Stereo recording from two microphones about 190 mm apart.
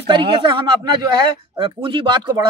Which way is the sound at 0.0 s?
25° right (ahead or behind).